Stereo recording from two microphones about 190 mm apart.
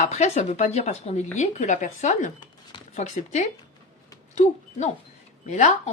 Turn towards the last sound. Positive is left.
turn(degrees=40)  # may be behind; listen again after turning